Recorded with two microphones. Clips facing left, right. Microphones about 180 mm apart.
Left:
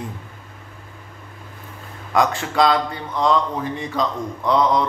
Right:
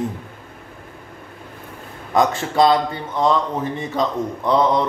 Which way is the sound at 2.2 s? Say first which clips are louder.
Right 2 dB; 20° right (ahead or behind).